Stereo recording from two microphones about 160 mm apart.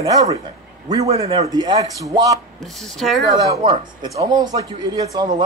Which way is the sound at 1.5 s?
25° right (ahead or behind).